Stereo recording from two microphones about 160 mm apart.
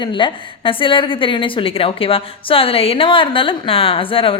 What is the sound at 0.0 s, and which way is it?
A woman's voice, 30° left (ahead or behind).